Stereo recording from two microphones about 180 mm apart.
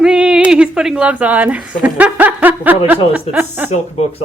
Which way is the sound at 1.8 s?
10° right (ahead or behind).